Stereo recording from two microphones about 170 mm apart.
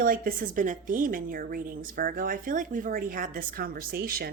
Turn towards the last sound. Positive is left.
turn(degrees=-60)  # may be behind; listen again after turning